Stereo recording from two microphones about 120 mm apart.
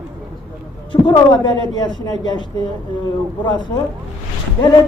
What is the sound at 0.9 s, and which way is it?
Speech, 40° left (ahead or behind).